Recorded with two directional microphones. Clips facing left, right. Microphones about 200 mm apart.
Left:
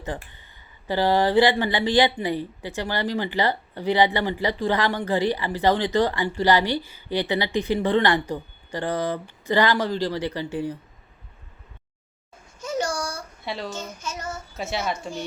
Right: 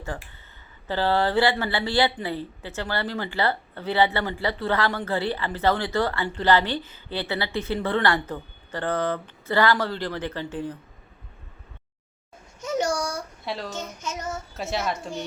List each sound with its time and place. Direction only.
0.0 s a woman's voice: 20° left (ahead or behind)
12.5 s a sound: 20° right (ahead or behind)
13.4 s a woman's voice: centre (ahead or behind)
13.7 s child singing: 20° right (ahead or behind)
14.5 s a woman's voice: centre (ahead or behind)